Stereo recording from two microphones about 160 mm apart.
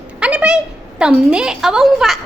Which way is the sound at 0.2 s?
5° right (ahead or behind).